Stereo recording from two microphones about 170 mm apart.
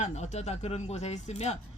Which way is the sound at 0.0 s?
40° left (ahead or behind).